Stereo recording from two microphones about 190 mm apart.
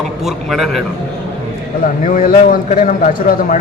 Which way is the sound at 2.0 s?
45° left (ahead or behind).